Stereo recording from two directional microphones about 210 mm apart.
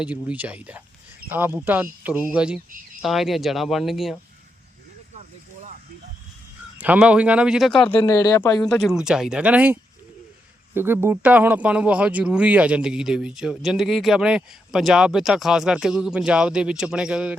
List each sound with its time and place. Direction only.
0.0 s speech: 5° right (ahead or behind)
6.7 s speech: 5° right (ahead or behind)
7.7 s speech: 25° left (ahead or behind)
7.9 s speech: 15° left (ahead or behind)
8.6 s speech: centre (ahead or behind)
10.8 s speech: 10° right (ahead or behind)